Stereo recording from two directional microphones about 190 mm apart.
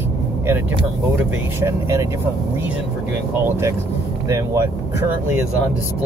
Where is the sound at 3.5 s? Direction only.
15° right (ahead or behind).